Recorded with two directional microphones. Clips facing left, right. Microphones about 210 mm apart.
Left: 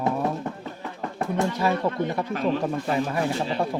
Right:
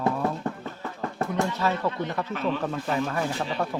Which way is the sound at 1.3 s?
10° left (ahead or behind).